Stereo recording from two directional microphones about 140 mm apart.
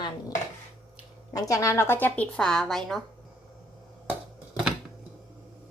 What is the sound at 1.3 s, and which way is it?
Speech, 25° left (ahead or behind).